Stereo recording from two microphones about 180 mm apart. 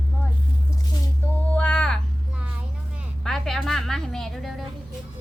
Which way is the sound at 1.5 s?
5° left (ahead or behind).